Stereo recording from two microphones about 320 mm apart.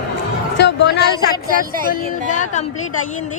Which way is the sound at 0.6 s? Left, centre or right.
Left.